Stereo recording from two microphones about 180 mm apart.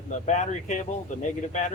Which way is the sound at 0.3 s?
40° left (ahead or behind).